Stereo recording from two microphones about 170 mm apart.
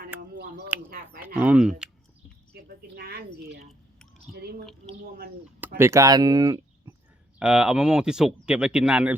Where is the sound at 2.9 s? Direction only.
65° right (ahead or behind).